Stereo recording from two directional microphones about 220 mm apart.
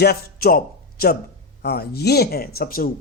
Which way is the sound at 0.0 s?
45° left (ahead or behind).